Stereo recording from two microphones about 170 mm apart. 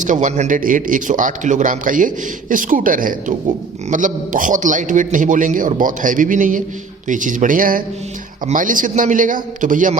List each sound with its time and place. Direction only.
0.0 s speech: 50° right (ahead or behind)